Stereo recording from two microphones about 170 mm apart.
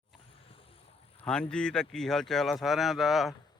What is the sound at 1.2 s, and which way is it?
Speech, 5° left (ahead or behind).